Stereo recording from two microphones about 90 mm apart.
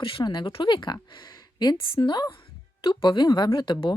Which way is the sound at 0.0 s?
75° left (ahead or behind).